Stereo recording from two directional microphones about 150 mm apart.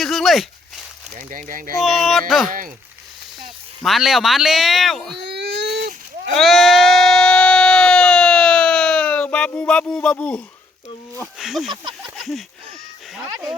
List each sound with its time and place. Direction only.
0.0 s a sound: centre (ahead or behind)
1.1 s speech: 60° right (ahead or behind)
1.8 s speech: centre (ahead or behind)
2.5 s speech: 65° right (ahead or behind)
3.8 s speech: centre (ahead or behind)
5.1 s baby cry: 90° right
6.3 s sheep: centre (ahead or behind)
9.6 s speech: 5° left (ahead or behind)
11.7 s speech: 30° right (ahead or behind)
12.1 s a sound: centre (ahead or behind)